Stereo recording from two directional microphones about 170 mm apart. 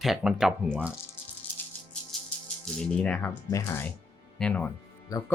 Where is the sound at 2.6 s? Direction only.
5° left (ahead or behind).